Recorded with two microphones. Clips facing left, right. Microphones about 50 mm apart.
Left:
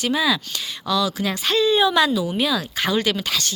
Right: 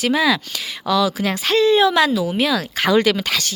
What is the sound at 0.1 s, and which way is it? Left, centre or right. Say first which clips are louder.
A woman's voice: right 2 dB; right.